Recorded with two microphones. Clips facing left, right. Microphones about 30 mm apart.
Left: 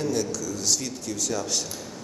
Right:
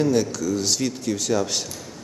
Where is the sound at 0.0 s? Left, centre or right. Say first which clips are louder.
Right 6 dB; right.